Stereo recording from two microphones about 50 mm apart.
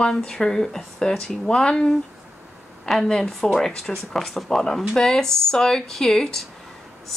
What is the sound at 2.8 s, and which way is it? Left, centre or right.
A woman's voice, centre.